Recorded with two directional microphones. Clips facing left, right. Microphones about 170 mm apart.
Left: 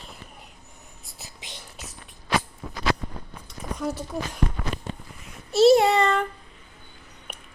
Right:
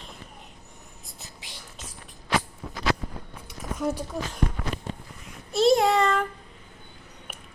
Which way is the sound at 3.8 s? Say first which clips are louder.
Right 2 dB; centre (ahead or behind).